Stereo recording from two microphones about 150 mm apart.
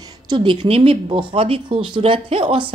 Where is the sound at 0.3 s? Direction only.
35° right (ahead or behind).